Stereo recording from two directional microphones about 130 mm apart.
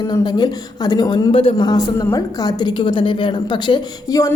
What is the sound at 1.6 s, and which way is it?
A woman's voice, 30° left (ahead or behind).